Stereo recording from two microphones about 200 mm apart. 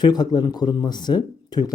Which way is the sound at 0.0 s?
20° left (ahead or behind).